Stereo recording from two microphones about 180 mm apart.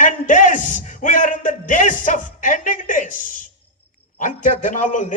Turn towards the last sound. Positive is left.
turn(degrees=45)  # may be behind; listen again after turning